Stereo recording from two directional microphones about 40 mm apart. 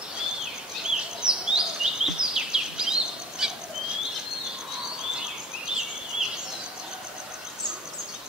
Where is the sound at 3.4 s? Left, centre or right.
Centre.